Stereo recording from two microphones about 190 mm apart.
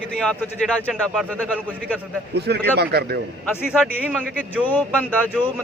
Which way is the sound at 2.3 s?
60° right (ahead or behind).